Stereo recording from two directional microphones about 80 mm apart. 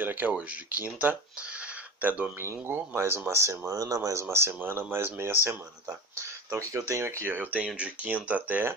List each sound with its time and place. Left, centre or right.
0.0 s speech: right
2.4 s speech: right
5.9 s speech: right
7.6 s speech: centre